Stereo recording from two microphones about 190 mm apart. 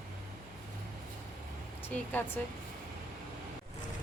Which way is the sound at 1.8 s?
10° left (ahead or behind).